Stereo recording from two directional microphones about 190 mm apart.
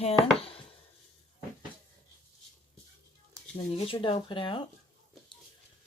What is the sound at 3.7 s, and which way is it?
Speech, 30° left (ahead or behind).